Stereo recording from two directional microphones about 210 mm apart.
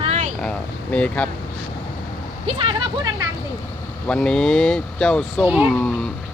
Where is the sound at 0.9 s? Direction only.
5° left (ahead or behind).